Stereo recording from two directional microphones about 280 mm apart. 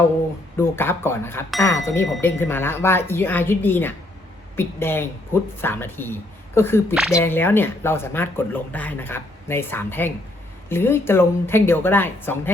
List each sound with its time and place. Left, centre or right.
0.5 s speech: centre